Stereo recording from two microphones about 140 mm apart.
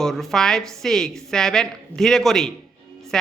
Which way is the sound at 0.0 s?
Centre (ahead or behind).